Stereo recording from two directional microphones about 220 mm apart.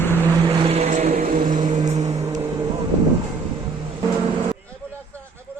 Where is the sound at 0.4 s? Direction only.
25° right (ahead or behind).